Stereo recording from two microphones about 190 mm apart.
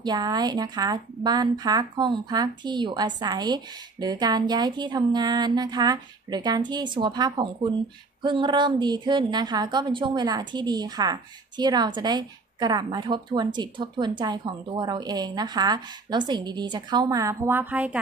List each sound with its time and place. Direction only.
0.0 s a woman's voice: 20° right (ahead or behind)